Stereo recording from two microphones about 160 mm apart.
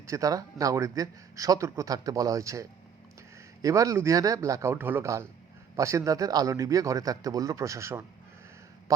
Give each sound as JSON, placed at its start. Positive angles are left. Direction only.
{"t": 0.1, "sound": "speech", "side_deg": -20}